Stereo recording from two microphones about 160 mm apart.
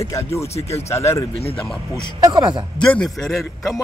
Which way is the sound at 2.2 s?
25° right (ahead or behind).